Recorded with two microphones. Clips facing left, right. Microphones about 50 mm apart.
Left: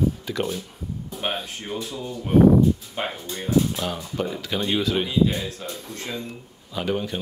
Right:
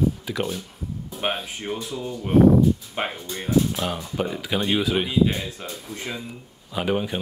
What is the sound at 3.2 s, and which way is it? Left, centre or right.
Speech, centre.